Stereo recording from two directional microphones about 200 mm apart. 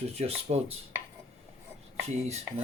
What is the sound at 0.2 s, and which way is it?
Speech, 30° right (ahead or behind).